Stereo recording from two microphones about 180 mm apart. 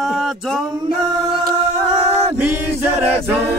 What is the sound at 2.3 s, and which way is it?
Music, 10° right (ahead or behind).